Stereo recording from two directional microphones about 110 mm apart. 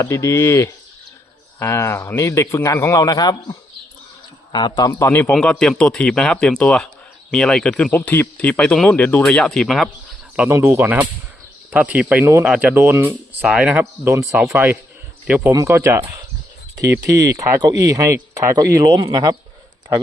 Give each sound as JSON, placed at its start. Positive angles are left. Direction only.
{"t": 0.0, "sound": "a man's voice", "side_deg": 25}
{"t": 3.0, "sound": "a man's voice", "side_deg": 35}
{"t": 4.5, "sound": "a man's voice", "side_deg": 40}
{"t": 5.3, "sound": "speech", "side_deg": 5}
{"t": 10.5, "sound": "speech", "side_deg": -25}
{"t": 12.2, "sound": "speech", "side_deg": -25}
{"t": 12.5, "sound": "speech", "side_deg": -15}
{"t": 14.1, "sound": "speech", "side_deg": -30}